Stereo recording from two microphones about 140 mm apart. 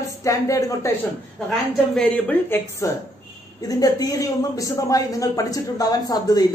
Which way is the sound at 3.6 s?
25° left (ahead or behind).